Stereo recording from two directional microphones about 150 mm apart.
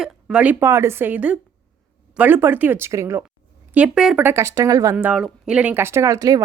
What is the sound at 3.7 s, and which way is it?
Speech, 5° right (ahead or behind).